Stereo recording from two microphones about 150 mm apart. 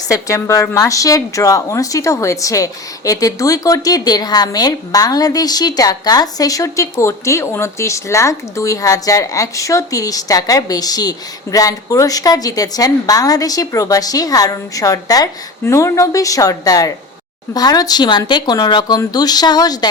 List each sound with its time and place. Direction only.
0.1 s a woman's voice: 20° left (ahead or behind)